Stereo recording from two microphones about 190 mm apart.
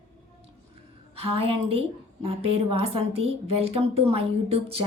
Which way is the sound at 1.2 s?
30° right (ahead or behind).